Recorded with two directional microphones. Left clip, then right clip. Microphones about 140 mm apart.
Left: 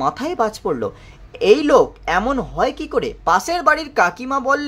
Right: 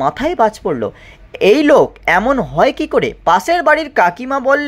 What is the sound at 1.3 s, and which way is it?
Speech, 25° right (ahead or behind).